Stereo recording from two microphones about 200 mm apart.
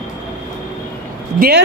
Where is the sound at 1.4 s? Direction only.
50° right (ahead or behind).